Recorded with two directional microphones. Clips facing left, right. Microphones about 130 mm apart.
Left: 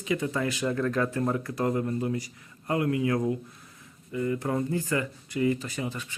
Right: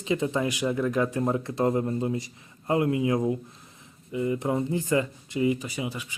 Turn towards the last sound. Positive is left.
turn(degrees=-10)  # may be behind; listen again after turning